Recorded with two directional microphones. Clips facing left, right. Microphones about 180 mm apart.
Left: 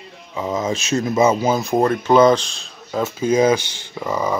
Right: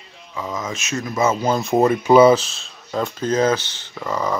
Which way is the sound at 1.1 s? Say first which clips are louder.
Left 3 dB; 15° left (ahead or behind).